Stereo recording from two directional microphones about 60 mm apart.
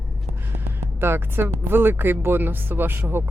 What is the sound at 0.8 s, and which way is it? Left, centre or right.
Speech, right.